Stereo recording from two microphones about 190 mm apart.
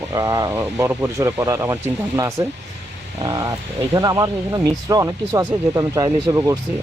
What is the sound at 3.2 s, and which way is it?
Speech, 20° right (ahead or behind).